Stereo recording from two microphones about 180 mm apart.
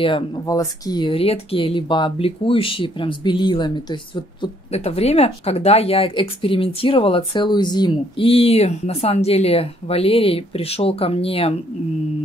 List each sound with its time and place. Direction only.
0.0 s speech: 25° left (ahead or behind)